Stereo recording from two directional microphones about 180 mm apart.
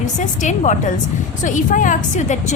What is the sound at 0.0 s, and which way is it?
A woman's voice, 40° left (ahead or behind).